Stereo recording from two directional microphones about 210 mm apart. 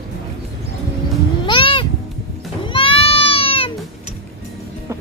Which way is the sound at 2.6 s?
25° left (ahead or behind).